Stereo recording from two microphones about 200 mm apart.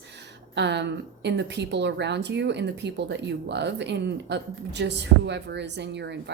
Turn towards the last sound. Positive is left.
turn(degrees=-60)  # may be behind; listen again after turning